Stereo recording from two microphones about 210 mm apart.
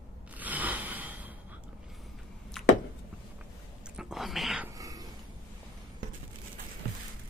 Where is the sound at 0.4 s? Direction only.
10° right (ahead or behind).